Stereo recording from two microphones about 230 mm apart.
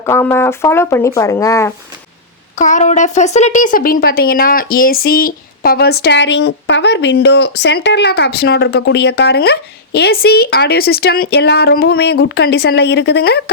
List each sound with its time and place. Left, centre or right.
0.0 s speech: centre
2.6 s speech: left